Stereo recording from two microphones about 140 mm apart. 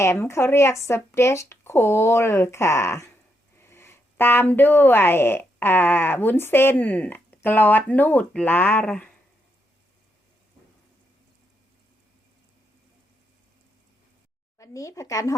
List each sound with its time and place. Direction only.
0.0 s speech: 20° left (ahead or behind)
14.6 s speech: 25° left (ahead or behind)